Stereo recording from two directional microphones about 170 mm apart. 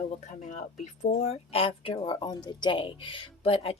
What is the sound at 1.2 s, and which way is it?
A woman's voice, 35° left (ahead or behind).